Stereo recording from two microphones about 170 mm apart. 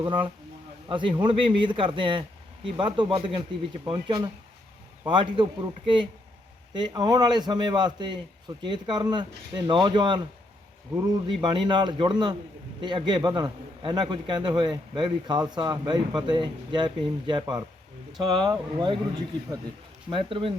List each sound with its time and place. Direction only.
0.0 s a man's voice: 30° right (ahead or behind)
20.1 s speech: 30° right (ahead or behind)